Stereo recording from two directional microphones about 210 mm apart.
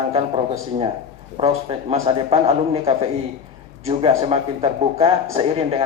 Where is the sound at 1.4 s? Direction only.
30° right (ahead or behind).